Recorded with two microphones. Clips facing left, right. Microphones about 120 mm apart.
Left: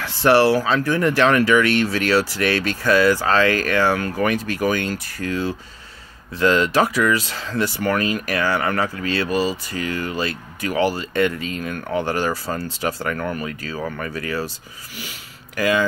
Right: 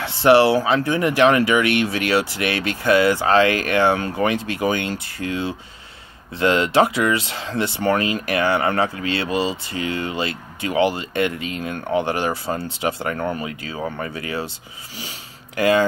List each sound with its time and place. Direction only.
0.0 s speech: 20° right (ahead or behind)